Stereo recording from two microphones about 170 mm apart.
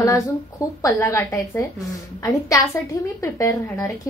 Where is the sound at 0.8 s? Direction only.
15° left (ahead or behind).